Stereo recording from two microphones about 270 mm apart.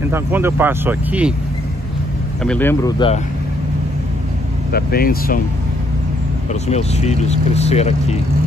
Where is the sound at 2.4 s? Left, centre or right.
Centre.